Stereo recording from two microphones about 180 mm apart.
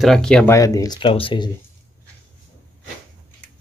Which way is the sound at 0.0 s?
5° left (ahead or behind).